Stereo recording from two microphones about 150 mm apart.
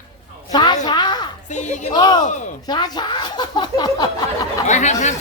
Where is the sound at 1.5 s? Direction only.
55° left (ahead or behind).